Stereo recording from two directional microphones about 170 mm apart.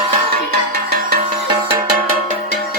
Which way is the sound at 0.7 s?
65° right (ahead or behind).